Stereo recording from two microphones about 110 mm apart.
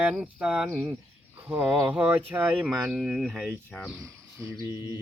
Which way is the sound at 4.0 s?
30° right (ahead or behind).